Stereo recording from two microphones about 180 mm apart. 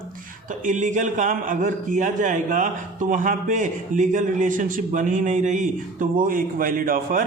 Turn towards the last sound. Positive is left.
turn(degrees=-50)  # may be behind; listen again after turning